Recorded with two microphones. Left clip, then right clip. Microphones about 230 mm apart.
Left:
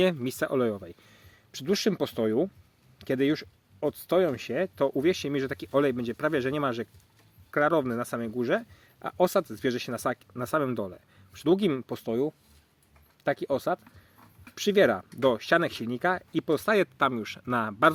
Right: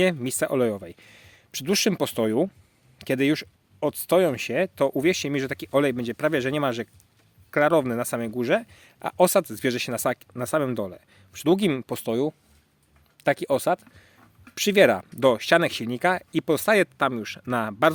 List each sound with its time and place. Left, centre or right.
0.0 s a man's voice: centre